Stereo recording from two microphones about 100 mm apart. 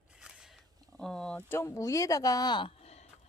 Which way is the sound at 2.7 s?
90° left.